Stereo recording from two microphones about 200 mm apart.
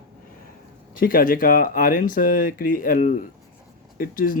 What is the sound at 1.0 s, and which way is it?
Speech, 45° left (ahead or behind).